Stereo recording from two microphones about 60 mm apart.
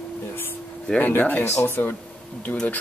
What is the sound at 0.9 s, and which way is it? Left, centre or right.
Speech, left.